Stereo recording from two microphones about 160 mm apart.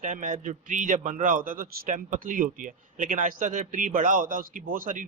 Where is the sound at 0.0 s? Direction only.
55° right (ahead or behind).